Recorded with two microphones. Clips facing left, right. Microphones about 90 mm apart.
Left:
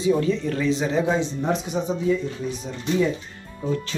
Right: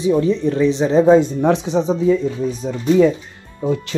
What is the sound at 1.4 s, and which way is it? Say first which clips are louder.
Speech: right 8 dB; 85° right.